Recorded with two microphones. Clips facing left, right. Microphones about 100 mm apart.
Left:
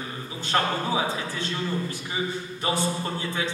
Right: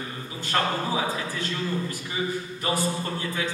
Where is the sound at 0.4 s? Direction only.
25° left (ahead or behind).